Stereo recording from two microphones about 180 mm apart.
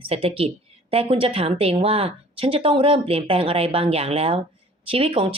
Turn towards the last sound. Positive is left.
turn(degrees=-30)  # may be behind; listen again after turning